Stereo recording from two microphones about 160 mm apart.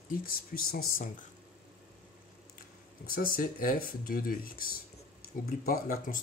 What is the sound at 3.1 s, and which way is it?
Speech, 65° left (ahead or behind).